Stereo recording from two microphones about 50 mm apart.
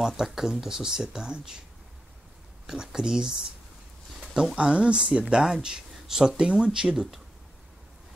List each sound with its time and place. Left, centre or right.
0.0 s speech: centre
2.6 s speech: centre
4.2 s a sound: centre
4.6 s speech: right